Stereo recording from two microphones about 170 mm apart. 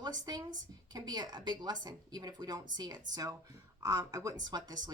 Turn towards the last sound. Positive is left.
turn(degrees=-25)  # may be behind; listen again after turning